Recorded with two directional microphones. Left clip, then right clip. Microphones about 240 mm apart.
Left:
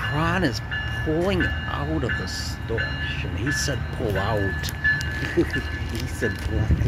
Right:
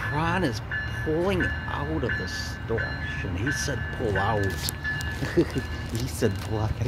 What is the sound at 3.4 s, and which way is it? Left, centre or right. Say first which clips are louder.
Speech: left 3 dB; centre.